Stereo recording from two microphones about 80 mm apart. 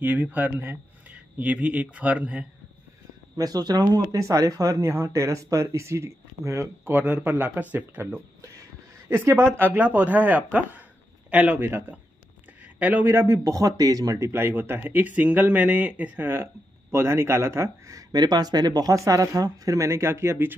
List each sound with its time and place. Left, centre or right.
0.0 s speech: right
3.3 s speech: right
6.8 s a man's voice: right
12.7 s speech: centre; by 14.3 s right
14.3 s speech: right
18.1 s speech: right